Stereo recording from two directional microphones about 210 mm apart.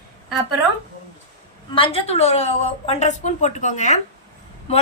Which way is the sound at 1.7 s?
25° left (ahead or behind).